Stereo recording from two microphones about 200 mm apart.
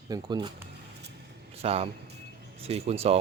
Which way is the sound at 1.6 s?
30° right (ahead or behind).